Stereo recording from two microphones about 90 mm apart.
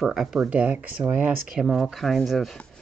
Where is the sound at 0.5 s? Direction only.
15° right (ahead or behind); by 2.5 s centre (ahead or behind).